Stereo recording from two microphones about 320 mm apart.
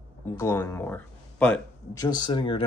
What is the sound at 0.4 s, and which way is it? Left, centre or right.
Speech, centre.